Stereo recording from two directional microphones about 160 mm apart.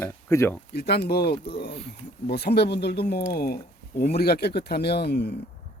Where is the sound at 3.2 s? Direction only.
70° left (ahead or behind); by 5.4 s 90° left.